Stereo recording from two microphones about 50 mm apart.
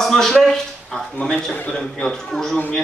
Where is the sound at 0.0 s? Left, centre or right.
Centre.